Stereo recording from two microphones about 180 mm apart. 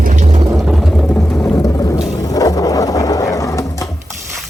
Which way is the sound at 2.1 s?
20° left (ahead or behind).